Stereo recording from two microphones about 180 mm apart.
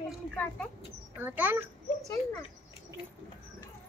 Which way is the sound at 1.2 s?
10° right (ahead or behind).